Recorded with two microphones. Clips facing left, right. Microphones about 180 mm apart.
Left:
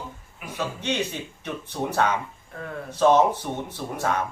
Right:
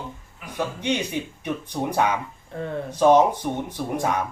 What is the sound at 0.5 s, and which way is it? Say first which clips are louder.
Speech: right 2 dB; 15° right (ahead or behind).